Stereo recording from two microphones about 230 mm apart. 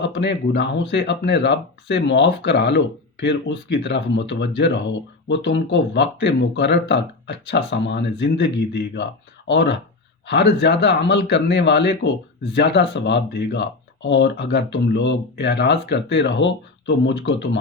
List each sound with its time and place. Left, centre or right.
0.0 s speech: left